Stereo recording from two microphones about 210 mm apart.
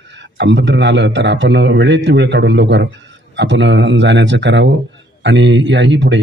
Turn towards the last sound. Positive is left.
turn(degrees=-55)  # may be behind; listen again after turning